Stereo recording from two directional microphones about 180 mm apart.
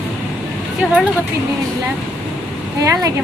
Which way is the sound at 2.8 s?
20° right (ahead or behind).